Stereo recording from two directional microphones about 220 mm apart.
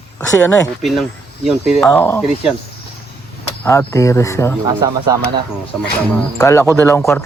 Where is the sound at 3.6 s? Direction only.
15° left (ahead or behind).